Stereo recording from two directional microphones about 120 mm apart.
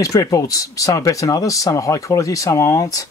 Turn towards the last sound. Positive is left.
turn(degrees=30)  # may be behind; listen again after turning